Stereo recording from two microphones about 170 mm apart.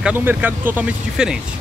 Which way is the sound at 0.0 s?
10° right (ahead or behind).